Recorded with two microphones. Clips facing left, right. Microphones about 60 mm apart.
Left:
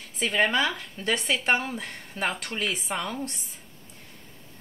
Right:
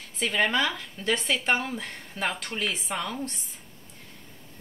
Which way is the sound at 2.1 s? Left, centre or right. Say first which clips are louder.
Left 1 dB; left.